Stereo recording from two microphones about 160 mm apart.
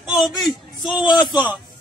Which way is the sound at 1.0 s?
30° left (ahead or behind).